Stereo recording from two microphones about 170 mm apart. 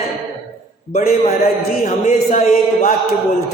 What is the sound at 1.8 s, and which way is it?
Speech, 45° left (ahead or behind).